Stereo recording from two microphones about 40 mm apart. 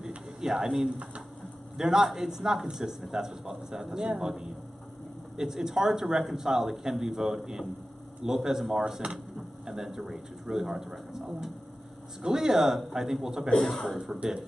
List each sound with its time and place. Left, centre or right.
0.4 s a man's voice: centre
10.0 s a man's voice: right
13.6 s a man's voice: centre